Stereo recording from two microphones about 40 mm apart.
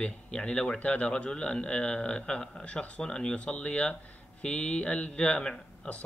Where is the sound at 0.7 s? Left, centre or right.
Left.